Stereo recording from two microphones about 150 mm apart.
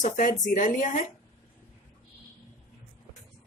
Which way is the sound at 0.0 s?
55° left (ahead or behind).